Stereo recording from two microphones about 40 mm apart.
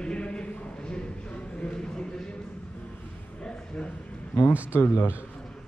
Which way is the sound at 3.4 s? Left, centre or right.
Left.